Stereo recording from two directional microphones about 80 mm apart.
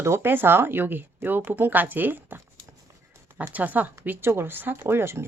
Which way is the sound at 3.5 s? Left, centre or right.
Right.